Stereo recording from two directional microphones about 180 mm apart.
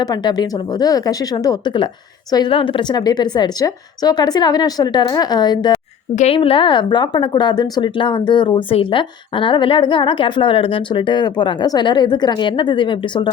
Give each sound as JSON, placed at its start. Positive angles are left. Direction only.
{"t": 0.0, "sound": "a woman's voice", "side_deg": 25}
{"t": 6.1, "sound": "a woman's voice", "side_deg": 35}